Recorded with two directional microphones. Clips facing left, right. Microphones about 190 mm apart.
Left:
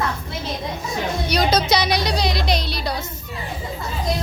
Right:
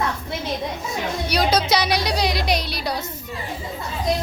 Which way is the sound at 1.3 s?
10° right (ahead or behind).